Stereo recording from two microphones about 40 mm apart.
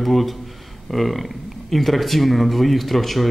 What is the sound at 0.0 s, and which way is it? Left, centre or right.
A man's voice, centre.